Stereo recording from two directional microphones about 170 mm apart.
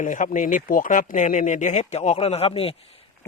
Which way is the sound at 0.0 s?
50° left (ahead or behind).